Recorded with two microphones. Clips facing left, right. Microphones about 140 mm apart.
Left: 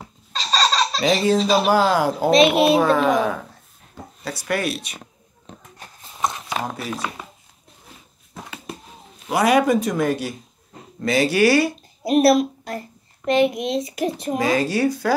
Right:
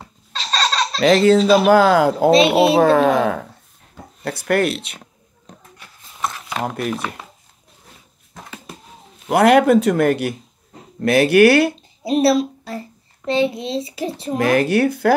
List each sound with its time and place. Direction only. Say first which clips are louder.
0.3 s a sound: left 1 dB; 10° left (ahead or behind)
0.9 s speech: right 8 dB; 75° right (ahead or behind); by 2.3 s 60° right (ahead or behind)
2.3 s speech: left 1 dB; 30° right (ahead or behind)
2.8 s speech: right 4 dB; 65° right (ahead or behind)
9.3 s speech: right 5 dB; 65° right (ahead or behind)
12.0 s speech: even; 30° right (ahead or behind)
14.4 s speech: right 4 dB; 60° right (ahead or behind)